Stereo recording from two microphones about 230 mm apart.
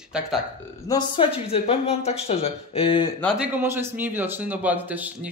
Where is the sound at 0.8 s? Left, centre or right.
Centre.